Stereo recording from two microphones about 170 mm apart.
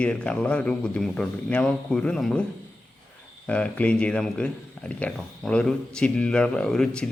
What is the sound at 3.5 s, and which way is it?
Speech, 10° left (ahead or behind).